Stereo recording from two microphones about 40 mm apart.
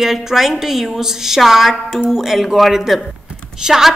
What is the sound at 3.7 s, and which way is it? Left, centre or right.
Speech, centre.